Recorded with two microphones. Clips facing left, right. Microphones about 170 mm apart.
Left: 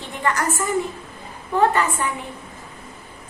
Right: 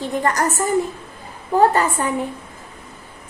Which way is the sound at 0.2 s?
40° right (ahead or behind).